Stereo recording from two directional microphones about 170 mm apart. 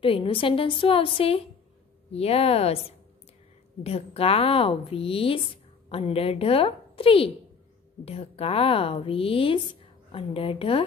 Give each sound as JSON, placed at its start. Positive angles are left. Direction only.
{"t": 0.0, "sound": "a woman's voice", "side_deg": 30}
{"t": 3.8, "sound": "a woman's voice", "side_deg": 35}